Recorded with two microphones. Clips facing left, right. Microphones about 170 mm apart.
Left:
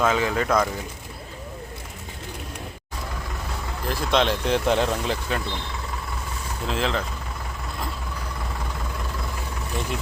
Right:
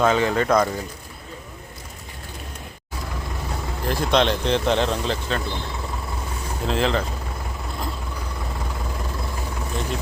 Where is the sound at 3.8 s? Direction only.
Centre (ahead or behind).